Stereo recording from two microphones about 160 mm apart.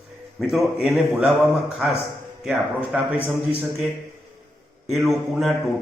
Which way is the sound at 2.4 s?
5° right (ahead or behind).